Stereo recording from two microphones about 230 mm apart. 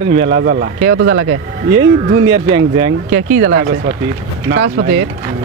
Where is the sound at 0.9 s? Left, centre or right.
Right.